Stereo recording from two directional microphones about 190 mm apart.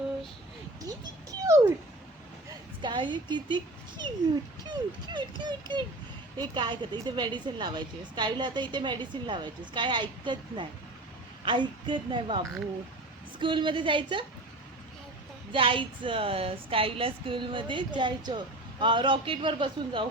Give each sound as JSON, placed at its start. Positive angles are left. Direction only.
{"t": 0.8, "sound": "a sound", "side_deg": -20}
{"t": 2.8, "sound": "a woman's voice", "side_deg": -25}
{"t": 15.5, "sound": "a woman's voice", "side_deg": -25}